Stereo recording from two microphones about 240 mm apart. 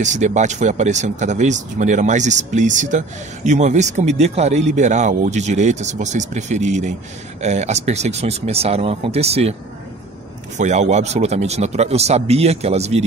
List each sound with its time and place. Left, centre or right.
0.0 s speech: right
10.6 s speech: right